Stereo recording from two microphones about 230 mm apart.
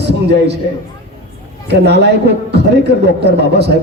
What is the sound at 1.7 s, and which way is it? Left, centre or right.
A man's voice, right.